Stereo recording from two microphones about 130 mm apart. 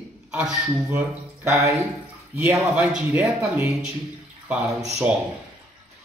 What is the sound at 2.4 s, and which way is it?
Speech, 10° right (ahead or behind).